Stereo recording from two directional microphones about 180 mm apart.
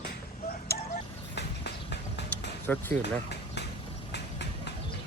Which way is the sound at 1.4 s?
70° left (ahead or behind).